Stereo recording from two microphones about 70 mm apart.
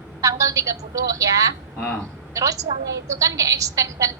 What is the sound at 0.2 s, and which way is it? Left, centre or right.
A woman's voice, right.